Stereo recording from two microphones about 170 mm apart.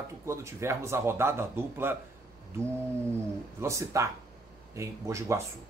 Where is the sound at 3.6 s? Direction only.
20° right (ahead or behind).